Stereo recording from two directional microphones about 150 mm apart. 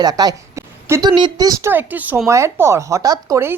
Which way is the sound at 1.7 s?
10° right (ahead or behind).